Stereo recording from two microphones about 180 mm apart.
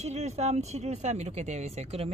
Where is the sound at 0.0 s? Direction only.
40° right (ahead or behind).